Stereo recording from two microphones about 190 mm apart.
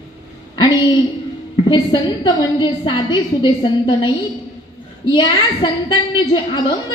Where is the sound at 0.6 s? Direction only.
20° left (ahead or behind).